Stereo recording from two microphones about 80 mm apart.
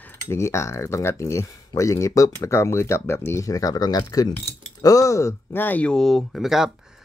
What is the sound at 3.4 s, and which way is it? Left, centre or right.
Speech, left.